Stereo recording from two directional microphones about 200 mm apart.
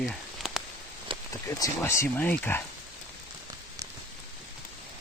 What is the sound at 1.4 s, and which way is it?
Speech, 15° left (ahead or behind).